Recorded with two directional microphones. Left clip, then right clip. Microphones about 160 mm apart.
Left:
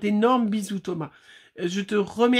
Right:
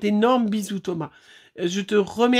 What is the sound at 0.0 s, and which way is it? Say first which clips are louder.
Speech: right 2 dB; 35° right (ahead or behind).